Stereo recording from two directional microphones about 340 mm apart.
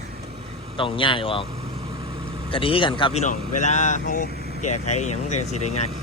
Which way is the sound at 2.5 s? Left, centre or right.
Centre.